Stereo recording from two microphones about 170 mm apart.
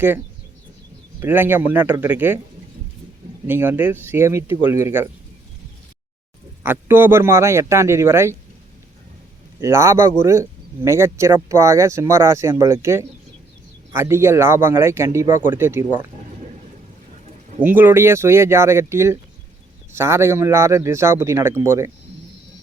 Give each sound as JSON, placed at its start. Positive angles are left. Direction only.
{"t": 1.2, "sound": "speech", "side_deg": -10}
{"t": 3.4, "sound": "speech", "side_deg": -10}
{"t": 6.6, "sound": "speech", "side_deg": -15}
{"t": 9.6, "sound": "speech", "side_deg": -15}
{"t": 17.6, "sound": "speech", "side_deg": -10}